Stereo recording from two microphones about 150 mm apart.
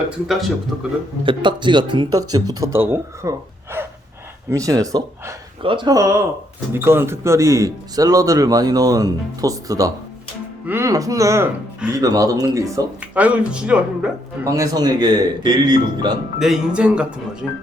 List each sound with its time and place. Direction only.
0.3 s speech: centre (ahead or behind)
1.2 s speech: 35° right (ahead or behind)
13.0 s speech: 10° right (ahead or behind)
14.4 s speech: 20° right (ahead or behind)
16.4 s speech: 5° right (ahead or behind)